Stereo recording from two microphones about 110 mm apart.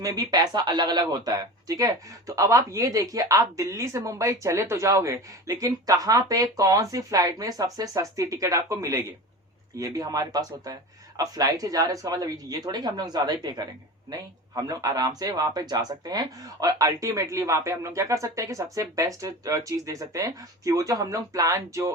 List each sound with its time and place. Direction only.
0.0 s speech: 35° right (ahead or behind)